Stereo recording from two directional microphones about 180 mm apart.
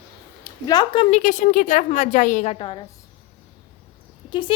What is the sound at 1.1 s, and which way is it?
A woman's voice, 40° left (ahead or behind).